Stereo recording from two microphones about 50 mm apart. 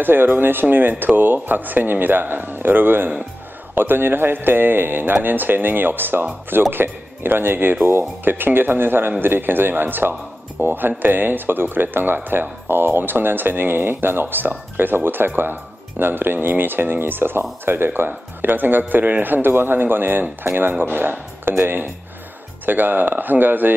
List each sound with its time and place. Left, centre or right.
0.0 s speech: right